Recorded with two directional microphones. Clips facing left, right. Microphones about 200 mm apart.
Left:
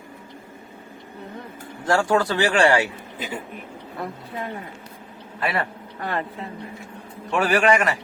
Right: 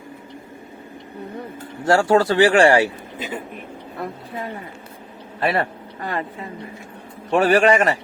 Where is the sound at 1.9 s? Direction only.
25° right (ahead or behind).